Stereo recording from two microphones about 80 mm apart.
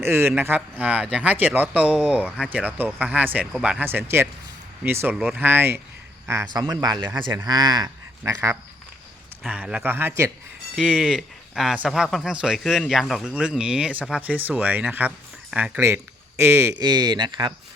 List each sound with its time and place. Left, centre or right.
0.0 s speech: right
3.4 s speech: centre
3.8 s speech: right
6.5 s speech: right
8.2 s speech: right
9.5 s speech: centre
10.9 s speech: centre
12.5 s speech: centre
13.2 s speech: centre
16.4 s speech: right
16.7 s speech: right